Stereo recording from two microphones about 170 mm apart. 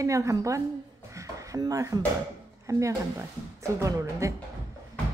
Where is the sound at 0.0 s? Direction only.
20° right (ahead or behind).